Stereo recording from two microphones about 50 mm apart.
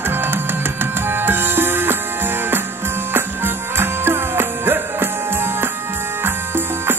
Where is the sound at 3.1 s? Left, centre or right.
Right.